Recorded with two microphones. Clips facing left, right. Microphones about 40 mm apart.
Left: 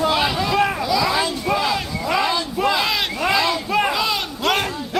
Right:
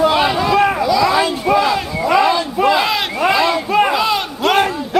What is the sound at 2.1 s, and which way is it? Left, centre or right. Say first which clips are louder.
Crowd: right 7 dB; centre.